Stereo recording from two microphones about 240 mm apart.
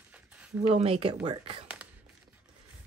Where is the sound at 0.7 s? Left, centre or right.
Right.